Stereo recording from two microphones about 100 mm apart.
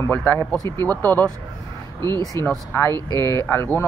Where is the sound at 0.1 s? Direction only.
20° left (ahead or behind).